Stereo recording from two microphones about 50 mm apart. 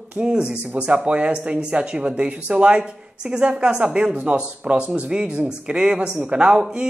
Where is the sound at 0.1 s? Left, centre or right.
Centre.